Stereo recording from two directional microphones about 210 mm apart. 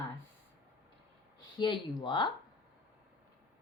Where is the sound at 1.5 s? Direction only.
20° left (ahead or behind).